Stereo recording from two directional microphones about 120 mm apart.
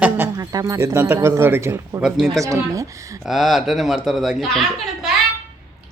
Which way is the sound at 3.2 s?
5° right (ahead or behind).